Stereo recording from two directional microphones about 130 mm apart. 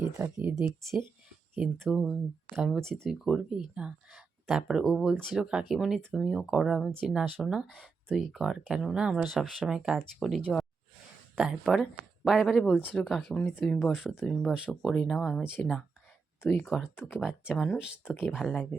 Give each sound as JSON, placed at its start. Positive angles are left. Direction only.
{"t": 0.2, "sound": "speech", "side_deg": -20}
{"t": 0.6, "sound": "speech", "side_deg": 0}
{"t": 7.7, "sound": "speech", "side_deg": -10}